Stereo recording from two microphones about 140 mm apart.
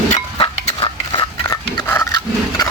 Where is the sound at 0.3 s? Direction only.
40° left (ahead or behind).